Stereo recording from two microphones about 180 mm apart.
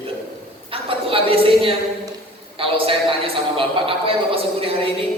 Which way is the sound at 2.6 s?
30° right (ahead or behind).